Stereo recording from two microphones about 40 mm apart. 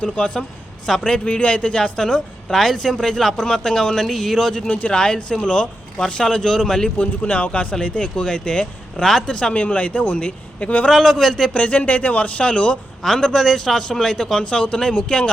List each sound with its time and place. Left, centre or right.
0.0 s speech: left
2.5 s a man's voice: centre
4.9 s speech: centre
7.0 s a man's voice: left
10.9 s a man's voice: centre
11.5 s a man's voice: left
13.0 s a man's voice: centre